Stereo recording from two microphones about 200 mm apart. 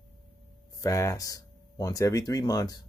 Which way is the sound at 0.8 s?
15° left (ahead or behind).